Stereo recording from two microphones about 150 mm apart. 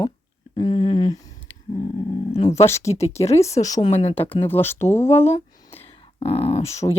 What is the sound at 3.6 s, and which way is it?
Speech, 40° left (ahead or behind).